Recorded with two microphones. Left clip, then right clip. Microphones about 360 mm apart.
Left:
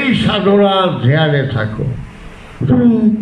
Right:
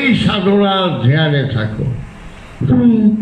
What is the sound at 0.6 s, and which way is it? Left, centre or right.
A man's voice, centre.